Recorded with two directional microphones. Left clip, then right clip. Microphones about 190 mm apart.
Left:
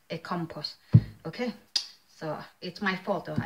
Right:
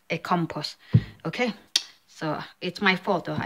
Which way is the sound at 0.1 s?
40° right (ahead or behind).